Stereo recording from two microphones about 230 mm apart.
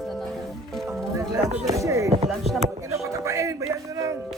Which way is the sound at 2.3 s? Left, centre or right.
Centre.